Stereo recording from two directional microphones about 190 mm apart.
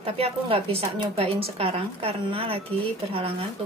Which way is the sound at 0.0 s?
30° right (ahead or behind).